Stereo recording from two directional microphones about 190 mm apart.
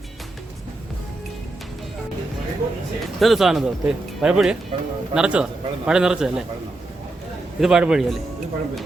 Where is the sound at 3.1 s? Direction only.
Centre (ahead or behind).